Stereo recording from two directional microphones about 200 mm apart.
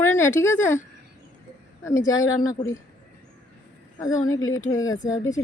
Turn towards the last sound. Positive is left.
turn(degrees=15)  # may be behind; listen again after turning